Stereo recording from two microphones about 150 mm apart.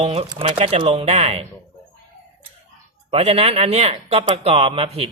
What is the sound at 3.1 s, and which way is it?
Speech, 45° right (ahead or behind).